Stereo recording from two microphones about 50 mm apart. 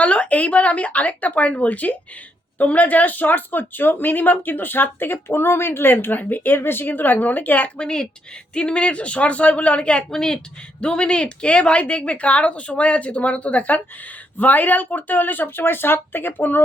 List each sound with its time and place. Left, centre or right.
0.0 s speech: left
7.8 s speech: centre
10.0 s speech: centre; by 16.6 s left